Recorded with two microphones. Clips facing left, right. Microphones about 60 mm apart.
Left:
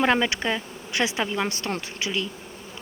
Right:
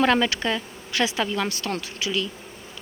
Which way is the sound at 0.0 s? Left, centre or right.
Left.